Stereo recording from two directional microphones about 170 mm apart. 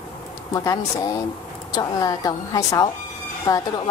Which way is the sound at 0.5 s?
20° left (ahead or behind).